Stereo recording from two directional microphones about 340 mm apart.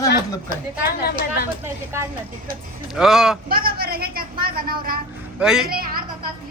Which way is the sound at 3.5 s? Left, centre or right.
Right.